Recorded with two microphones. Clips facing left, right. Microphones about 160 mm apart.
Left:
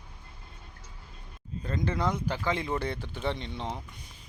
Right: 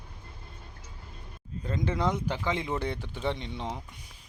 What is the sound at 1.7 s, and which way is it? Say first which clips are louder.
Speech: right 1 dB; 20° right (ahead or behind).